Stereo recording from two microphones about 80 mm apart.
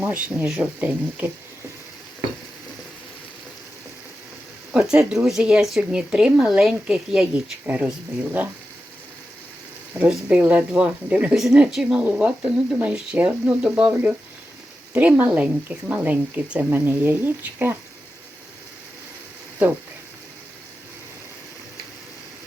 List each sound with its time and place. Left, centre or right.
0.0 s speech: right
4.7 s speech: centre
10.1 s speech: centre
11.3 s speech: centre; by 17.7 s right